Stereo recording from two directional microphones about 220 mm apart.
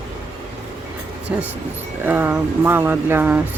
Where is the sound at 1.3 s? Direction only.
5° right (ahead or behind).